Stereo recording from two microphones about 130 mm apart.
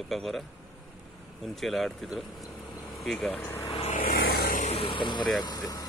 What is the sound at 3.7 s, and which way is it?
Vehicle, 55° left (ahead or behind).